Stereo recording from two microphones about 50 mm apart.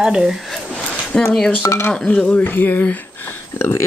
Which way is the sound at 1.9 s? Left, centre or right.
Left.